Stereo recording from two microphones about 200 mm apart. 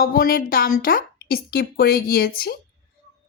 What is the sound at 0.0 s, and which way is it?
Speech, 45° left (ahead or behind).